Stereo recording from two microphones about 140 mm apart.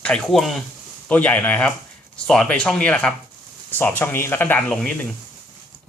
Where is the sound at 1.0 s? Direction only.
10° left (ahead or behind).